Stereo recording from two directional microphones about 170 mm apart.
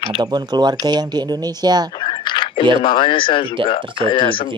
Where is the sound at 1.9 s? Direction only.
25° left (ahead or behind).